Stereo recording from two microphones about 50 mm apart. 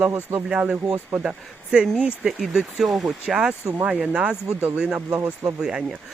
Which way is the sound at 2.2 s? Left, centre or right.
Centre.